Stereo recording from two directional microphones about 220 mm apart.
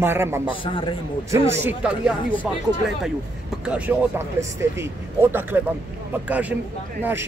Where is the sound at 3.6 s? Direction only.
5° right (ahead or behind).